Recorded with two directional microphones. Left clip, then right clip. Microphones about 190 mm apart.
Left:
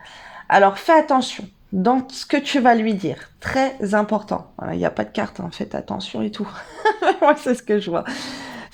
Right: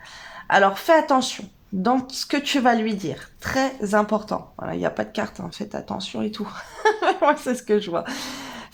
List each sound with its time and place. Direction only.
0.4 s a woman's voice: 20° left (ahead or behind)